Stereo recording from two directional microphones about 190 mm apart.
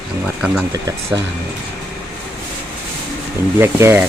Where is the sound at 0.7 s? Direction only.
20° right (ahead or behind).